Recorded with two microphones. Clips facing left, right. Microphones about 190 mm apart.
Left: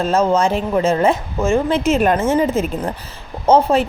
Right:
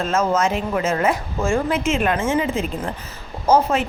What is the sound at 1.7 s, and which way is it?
Speech, 40° left (ahead or behind).